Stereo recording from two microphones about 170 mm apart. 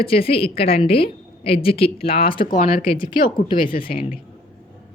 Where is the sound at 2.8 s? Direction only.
30° left (ahead or behind).